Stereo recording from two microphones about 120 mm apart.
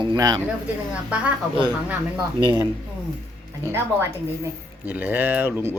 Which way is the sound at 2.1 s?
35° right (ahead or behind).